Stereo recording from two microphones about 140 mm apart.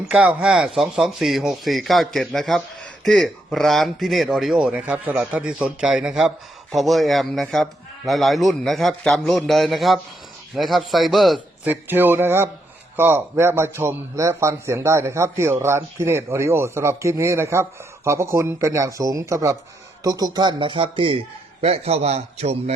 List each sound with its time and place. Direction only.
0.1 s a man's voice: 10° right (ahead or behind)
11.6 s a man's voice: 15° right (ahead or behind); by 22.7 s 50° right (ahead or behind)